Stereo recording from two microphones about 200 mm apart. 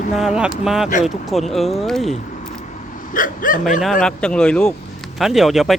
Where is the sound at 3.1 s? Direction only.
45° left (ahead or behind).